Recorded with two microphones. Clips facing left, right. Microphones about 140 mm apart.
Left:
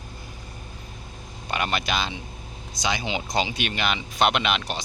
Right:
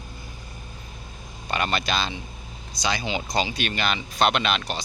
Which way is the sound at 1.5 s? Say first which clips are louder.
Right 1 dB; 15° left (ahead or behind).